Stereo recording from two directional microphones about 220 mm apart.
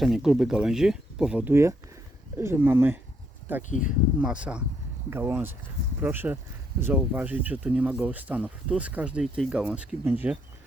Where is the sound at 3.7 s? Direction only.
35° left (ahead or behind).